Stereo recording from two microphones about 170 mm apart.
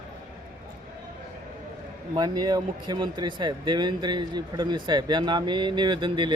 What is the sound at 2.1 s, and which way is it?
Speech, 25° right (ahead or behind).